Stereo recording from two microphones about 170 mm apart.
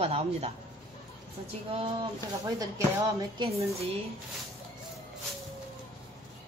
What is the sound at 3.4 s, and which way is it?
Speech, 35° right (ahead or behind).